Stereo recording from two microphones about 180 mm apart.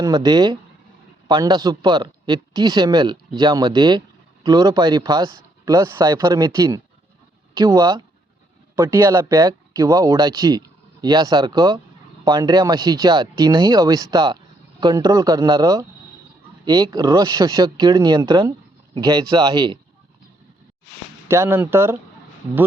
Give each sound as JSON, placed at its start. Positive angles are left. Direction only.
{"t": 0.0, "sound": "speech", "side_deg": -20}
{"t": 21.2, "sound": "speech", "side_deg": -15}